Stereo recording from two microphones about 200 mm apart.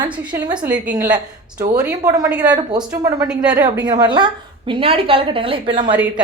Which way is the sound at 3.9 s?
20° right (ahead or behind).